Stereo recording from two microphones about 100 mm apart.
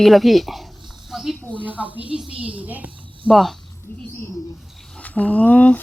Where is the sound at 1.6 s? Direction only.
15° right (ahead or behind).